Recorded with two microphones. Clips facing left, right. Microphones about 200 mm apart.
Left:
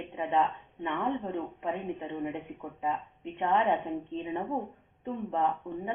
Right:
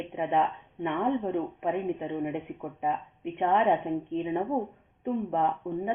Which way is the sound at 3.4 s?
15° right (ahead or behind).